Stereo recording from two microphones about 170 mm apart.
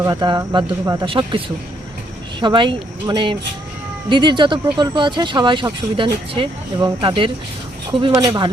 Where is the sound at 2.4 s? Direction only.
30° right (ahead or behind).